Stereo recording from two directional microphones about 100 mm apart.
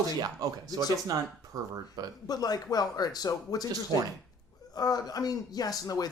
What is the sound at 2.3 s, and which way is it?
Speech, 40° left (ahead or behind).